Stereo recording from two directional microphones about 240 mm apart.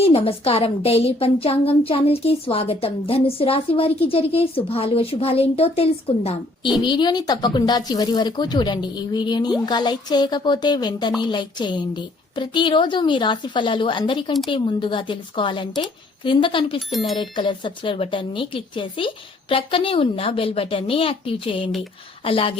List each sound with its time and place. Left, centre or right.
0.0 s speech: left